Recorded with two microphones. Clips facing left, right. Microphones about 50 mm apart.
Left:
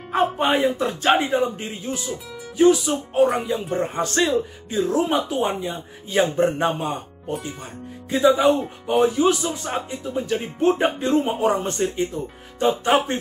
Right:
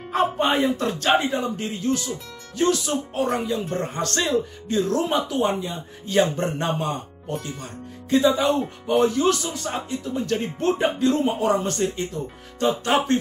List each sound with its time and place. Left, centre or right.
0.1 s a man's voice: centre
10.8 s speech: left